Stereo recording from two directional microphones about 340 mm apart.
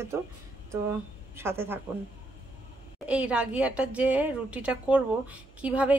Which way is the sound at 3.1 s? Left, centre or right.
Centre.